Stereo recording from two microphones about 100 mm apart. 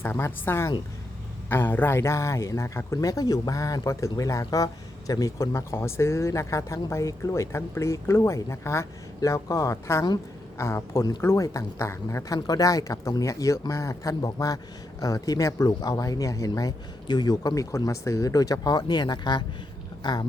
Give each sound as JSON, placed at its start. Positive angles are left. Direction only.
{"t": 0.0, "sound": "speech", "side_deg": 25}